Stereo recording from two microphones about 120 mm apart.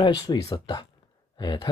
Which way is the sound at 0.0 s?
30° left (ahead or behind).